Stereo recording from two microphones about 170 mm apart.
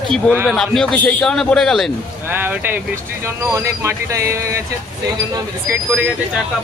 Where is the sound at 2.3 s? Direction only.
10° right (ahead or behind).